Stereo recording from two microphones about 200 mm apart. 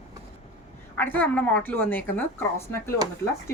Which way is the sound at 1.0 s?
10° left (ahead or behind).